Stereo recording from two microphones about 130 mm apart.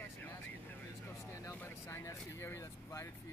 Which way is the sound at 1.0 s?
20° left (ahead or behind).